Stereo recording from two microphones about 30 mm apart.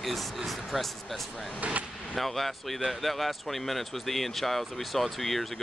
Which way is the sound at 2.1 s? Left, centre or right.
Centre.